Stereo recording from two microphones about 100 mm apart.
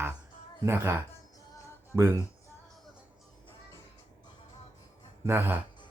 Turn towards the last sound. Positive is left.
turn(degrees=-20)  # may be behind; listen again after turning